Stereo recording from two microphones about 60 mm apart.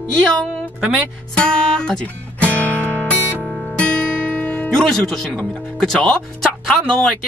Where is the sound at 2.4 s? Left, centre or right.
Left.